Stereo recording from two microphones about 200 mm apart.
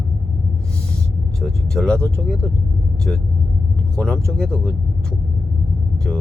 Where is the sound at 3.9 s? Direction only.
5° left (ahead or behind).